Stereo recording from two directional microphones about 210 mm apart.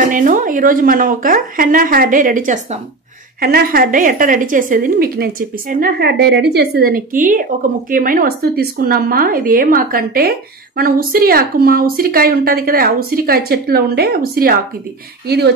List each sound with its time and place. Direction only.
0.1 s a woman's voice: 40° right (ahead or behind)